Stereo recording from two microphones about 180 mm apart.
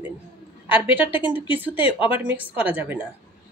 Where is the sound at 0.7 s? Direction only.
10° right (ahead or behind).